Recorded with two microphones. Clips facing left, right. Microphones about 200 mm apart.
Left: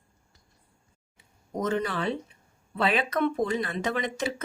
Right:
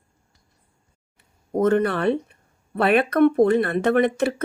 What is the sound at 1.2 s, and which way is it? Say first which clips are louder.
Speech: right 10 dB; 60° right (ahead or behind).